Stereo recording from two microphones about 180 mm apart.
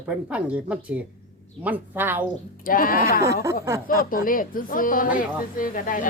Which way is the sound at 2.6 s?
50° left (ahead or behind).